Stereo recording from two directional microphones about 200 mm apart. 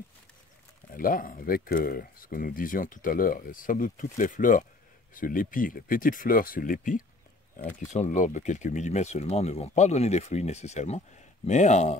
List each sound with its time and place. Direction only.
0.9 s speech: 45° left (ahead or behind)